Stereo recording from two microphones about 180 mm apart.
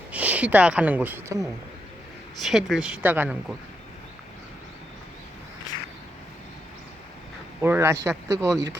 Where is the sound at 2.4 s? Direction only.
Centre (ahead or behind).